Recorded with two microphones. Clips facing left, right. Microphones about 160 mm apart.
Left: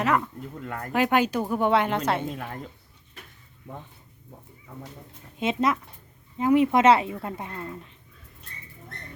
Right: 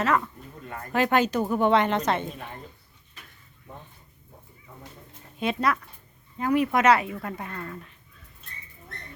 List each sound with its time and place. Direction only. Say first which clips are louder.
0.9 s a woman's voice: even; 10° left (ahead or behind)
5.4 s a woman's voice: left 1 dB; 20° left (ahead or behind)